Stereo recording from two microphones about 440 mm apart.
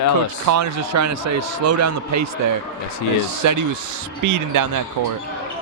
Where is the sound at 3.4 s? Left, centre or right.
Right.